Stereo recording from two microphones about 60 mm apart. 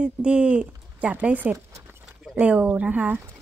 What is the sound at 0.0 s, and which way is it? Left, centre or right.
A woman's voice, centre.